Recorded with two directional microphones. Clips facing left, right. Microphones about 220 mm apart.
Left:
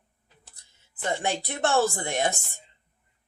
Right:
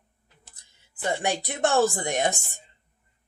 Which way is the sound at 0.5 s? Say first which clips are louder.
Right 1 dB; 15° right (ahead or behind).